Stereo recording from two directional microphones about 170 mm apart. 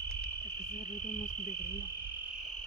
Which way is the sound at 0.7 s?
50° left (ahead or behind).